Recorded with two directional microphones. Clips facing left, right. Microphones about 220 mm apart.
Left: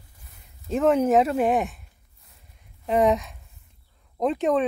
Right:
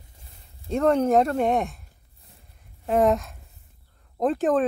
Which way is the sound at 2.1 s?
30° right (ahead or behind).